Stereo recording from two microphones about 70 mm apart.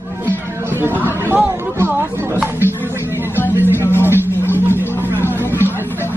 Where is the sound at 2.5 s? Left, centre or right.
Left.